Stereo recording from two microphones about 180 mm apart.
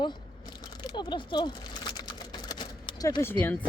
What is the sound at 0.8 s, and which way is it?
Typing, 25° left (ahead or behind).